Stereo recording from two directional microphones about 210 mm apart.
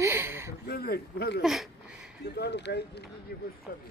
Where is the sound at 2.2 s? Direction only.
50° left (ahead or behind).